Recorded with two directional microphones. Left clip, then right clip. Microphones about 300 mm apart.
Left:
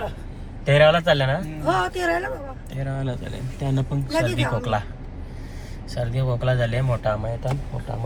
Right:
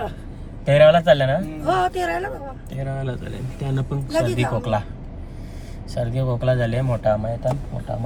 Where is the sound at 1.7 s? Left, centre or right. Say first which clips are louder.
Right 1 dB; centre.